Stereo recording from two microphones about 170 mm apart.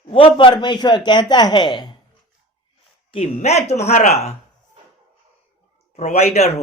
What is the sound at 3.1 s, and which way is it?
Speech, 40° left (ahead or behind).